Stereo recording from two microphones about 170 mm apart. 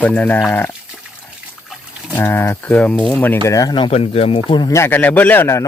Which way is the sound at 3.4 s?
20° left (ahead or behind).